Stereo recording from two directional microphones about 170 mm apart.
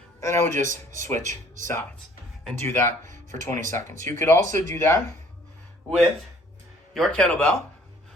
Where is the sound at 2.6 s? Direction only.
15° left (ahead or behind).